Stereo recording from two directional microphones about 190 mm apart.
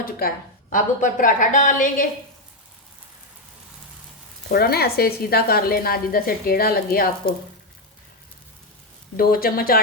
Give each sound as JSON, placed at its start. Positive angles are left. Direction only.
{"t": 0.0, "sound": "a woman's voice", "side_deg": 50}
{"t": 4.5, "sound": "a woman's voice", "side_deg": 55}
{"t": 9.1, "sound": "a woman's voice", "side_deg": 50}